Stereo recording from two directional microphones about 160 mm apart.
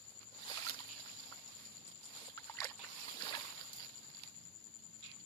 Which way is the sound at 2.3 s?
20° left (ahead or behind).